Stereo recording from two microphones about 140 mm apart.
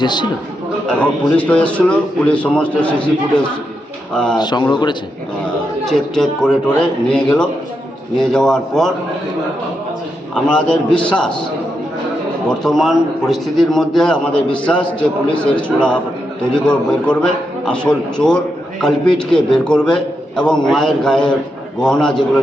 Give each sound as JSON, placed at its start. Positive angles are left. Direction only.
{"t": 0.0, "sound": "speech", "side_deg": 30}
{"t": 0.9, "sound": "a man's voice", "side_deg": 10}
{"t": 4.4, "sound": "speech", "side_deg": 30}
{"t": 5.8, "sound": "a man's voice", "side_deg": 5}
{"t": 10.3, "sound": "a man's voice", "side_deg": 5}
{"t": 12.5, "sound": "a man's voice", "side_deg": 5}